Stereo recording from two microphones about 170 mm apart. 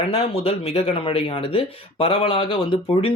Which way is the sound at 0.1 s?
35° left (ahead or behind).